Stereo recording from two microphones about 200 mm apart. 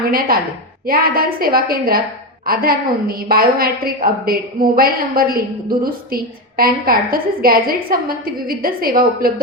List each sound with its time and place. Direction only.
0.1 s a woman's voice: 45° right (ahead or behind)
6.6 s a woman's voice: 45° right (ahead or behind)